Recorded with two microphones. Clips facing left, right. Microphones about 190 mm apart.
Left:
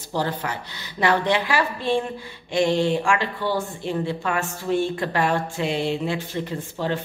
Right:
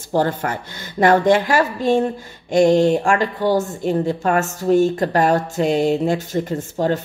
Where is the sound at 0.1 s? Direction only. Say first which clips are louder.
Right 7 dB; 50° right (ahead or behind).